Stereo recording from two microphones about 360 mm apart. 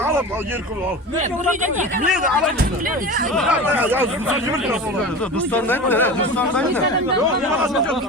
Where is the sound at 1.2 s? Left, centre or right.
Centre.